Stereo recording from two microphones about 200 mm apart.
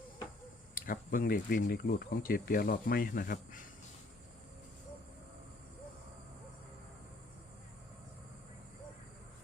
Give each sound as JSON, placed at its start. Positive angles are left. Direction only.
{"t": 0.8, "sound": "speech", "side_deg": 45}